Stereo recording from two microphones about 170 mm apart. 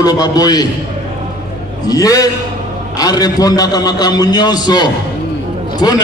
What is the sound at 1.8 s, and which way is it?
A man's voice, 20° left (ahead or behind).